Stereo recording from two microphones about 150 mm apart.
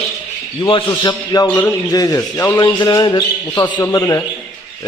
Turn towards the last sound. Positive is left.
turn(degrees=25)  # may be behind; listen again after turning